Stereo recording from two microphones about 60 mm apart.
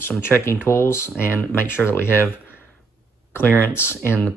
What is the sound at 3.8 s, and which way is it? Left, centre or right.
Speech, left.